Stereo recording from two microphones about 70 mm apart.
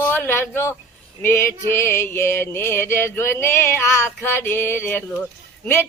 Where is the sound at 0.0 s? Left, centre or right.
Left.